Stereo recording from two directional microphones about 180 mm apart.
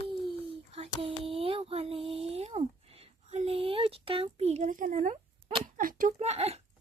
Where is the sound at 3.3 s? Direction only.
35° right (ahead or behind).